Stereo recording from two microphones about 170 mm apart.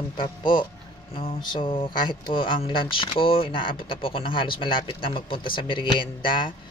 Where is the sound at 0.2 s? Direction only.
30° left (ahead or behind).